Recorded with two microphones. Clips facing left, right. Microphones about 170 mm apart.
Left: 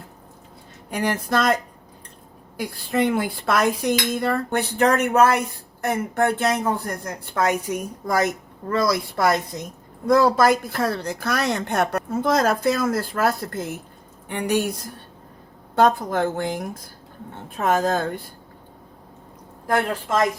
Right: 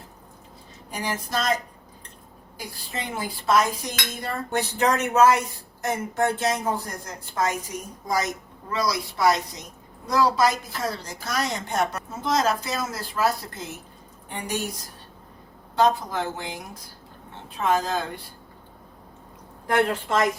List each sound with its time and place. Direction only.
0.9 s dishes: 60° left (ahead or behind)
2.6 s dishes: 60° left (ahead or behind)
8.7 s a woman's voice: 55° left (ahead or behind)
10.1 s dishes: 55° left (ahead or behind)
14.3 s dishes: 65° left (ahead or behind)
15.7 s a woman's voice: 50° left (ahead or behind)